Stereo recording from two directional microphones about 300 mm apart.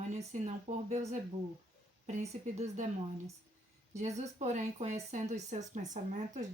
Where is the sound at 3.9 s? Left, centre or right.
Right.